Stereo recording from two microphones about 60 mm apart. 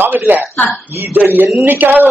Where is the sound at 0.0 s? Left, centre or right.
Right.